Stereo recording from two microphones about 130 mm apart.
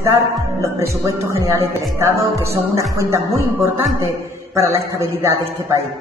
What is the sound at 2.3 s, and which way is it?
Speech, 25° right (ahead or behind).